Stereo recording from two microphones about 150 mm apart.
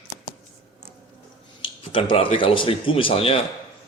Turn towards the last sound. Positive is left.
turn(degrees=40)  # may be behind; listen again after turning